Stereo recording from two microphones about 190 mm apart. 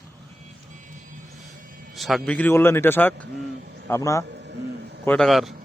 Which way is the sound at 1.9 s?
Centre (ahead or behind).